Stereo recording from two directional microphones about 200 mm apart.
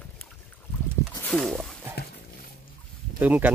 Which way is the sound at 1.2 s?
Centre (ahead or behind).